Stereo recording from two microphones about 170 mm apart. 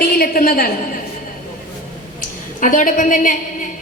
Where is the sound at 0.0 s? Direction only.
60° left (ahead or behind).